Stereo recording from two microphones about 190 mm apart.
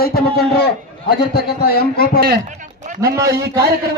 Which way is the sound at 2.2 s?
55° right (ahead or behind).